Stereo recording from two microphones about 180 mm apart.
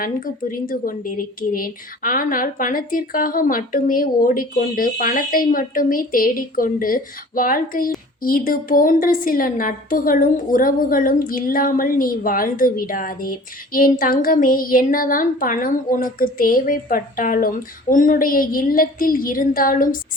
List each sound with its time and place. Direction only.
0.0 s speech: 50° left (ahead or behind)